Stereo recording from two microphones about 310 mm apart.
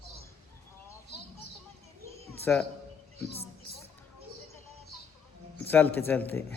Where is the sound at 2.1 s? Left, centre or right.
Centre.